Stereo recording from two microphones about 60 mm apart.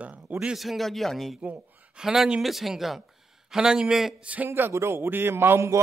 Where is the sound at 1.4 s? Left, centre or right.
Right.